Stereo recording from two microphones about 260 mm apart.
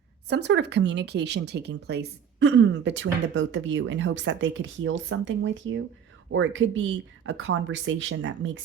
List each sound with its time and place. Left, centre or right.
0.3 s speech: right